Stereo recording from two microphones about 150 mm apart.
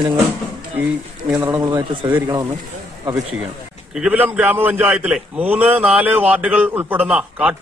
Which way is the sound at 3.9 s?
10° right (ahead or behind).